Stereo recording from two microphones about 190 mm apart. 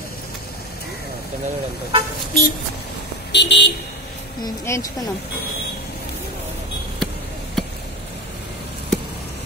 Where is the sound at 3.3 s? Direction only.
65° left (ahead or behind).